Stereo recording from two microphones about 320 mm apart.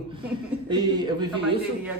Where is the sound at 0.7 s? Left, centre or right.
Centre.